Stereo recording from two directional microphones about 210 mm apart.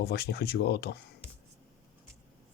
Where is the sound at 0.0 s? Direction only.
50° left (ahead or behind).